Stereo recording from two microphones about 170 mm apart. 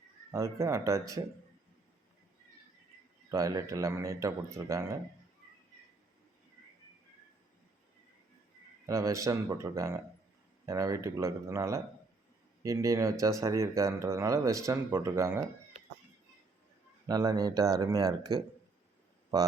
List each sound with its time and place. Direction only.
0.3 s speech: 15° right (ahead or behind)
3.3 s speech: 20° right (ahead or behind)
8.9 s speech: 20° right (ahead or behind)
17.1 s speech: 20° right (ahead or behind)